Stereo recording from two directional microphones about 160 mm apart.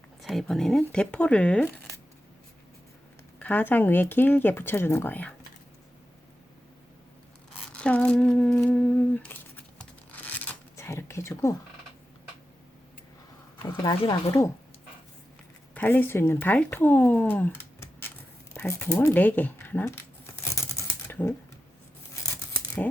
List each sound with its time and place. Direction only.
0.2 s speech: centre (ahead or behind)
3.3 s speech: 10° left (ahead or behind)
7.7 s humming: 10° left (ahead or behind)
13.6 s speech: 30° left (ahead or behind)
15.7 s speech: 10° left (ahead or behind)
18.5 s a sound: 15° left (ahead or behind)